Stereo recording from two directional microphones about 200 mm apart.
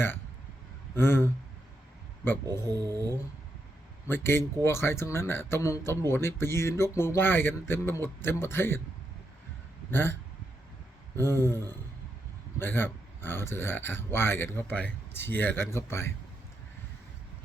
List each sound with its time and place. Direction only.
0.9 s speech: 10° left (ahead or behind)
2.6 s a sound: 20° right (ahead or behind)
4.1 s speech: 10° left (ahead or behind)
9.9 s speech: 10° left (ahead or behind)
11.2 s speech: 10° left (ahead or behind)